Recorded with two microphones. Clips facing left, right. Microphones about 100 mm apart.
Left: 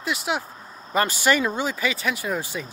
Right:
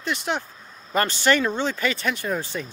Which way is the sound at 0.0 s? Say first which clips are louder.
Even; 5° left (ahead or behind).